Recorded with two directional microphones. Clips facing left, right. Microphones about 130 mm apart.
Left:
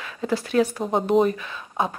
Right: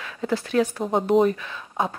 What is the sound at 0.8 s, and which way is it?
Speech, centre (ahead or behind).